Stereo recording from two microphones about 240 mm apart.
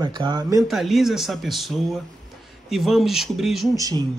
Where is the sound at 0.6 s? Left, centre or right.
Centre.